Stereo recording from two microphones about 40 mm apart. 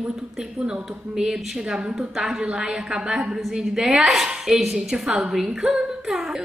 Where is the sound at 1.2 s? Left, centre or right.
Centre.